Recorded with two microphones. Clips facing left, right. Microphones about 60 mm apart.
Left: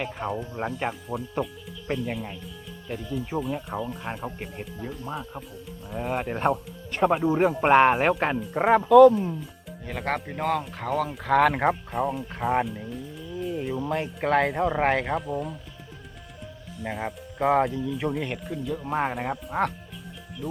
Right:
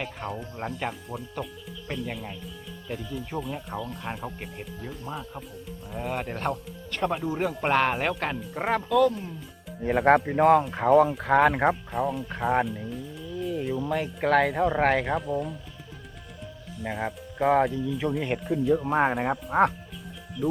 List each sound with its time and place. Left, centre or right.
0.0 s speech: centre
7.3 s speech: left
8.4 s speech: centre
9.9 s speech: centre
10.4 s speech: centre
11.5 s speech: centre
13.4 s music: centre
14.3 s speech: centre
16.7 s speech: centre